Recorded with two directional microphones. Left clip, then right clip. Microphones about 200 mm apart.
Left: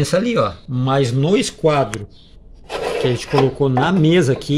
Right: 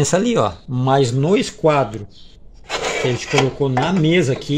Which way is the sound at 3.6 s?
10° left (ahead or behind).